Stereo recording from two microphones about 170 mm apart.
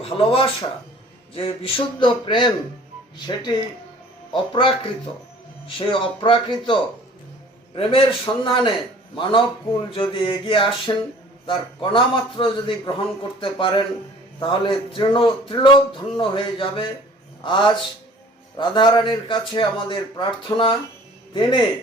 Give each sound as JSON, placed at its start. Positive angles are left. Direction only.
{"t": 0.0, "sound": "a man's voice", "side_deg": 35}
{"t": 7.8, "sound": "a man's voice", "side_deg": 30}